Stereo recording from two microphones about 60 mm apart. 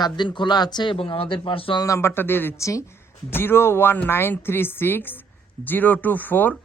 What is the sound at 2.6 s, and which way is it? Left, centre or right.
Speech, left.